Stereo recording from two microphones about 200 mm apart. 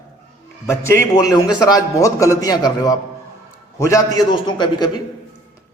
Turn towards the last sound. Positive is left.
turn(degrees=20)  # may be behind; listen again after turning